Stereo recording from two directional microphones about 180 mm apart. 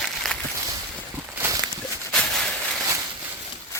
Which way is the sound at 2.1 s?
5° left (ahead or behind).